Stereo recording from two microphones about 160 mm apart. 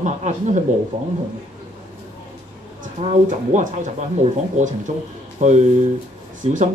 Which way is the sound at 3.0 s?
45° right (ahead or behind).